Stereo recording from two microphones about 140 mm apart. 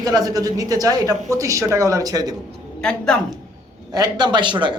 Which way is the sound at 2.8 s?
5° left (ahead or behind).